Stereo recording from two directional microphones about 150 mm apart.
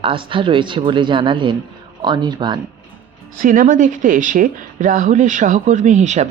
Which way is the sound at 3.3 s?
65° right (ahead or behind).